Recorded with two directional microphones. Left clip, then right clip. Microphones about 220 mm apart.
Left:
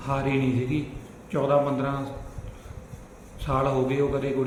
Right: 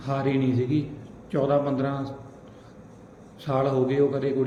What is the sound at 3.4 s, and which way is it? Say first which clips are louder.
Speech: right 1 dB; 15° left (ahead or behind).